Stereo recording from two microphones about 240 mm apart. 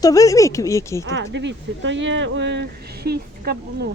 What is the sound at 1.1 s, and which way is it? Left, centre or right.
Speech, right.